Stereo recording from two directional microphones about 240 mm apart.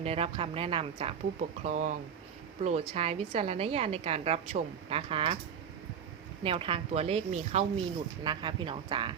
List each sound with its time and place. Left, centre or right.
0.0 s speech: right
6.4 s speech: right